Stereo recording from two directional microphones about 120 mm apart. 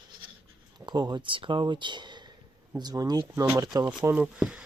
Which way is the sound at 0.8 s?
40° right (ahead or behind).